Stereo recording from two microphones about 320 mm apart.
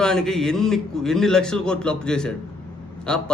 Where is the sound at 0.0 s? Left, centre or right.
Centre.